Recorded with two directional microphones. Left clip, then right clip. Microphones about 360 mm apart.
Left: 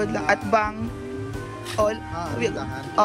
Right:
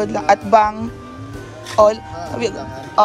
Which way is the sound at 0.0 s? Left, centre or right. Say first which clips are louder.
Right 7 dB; centre.